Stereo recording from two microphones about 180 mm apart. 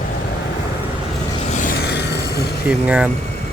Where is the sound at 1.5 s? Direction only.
45° left (ahead or behind).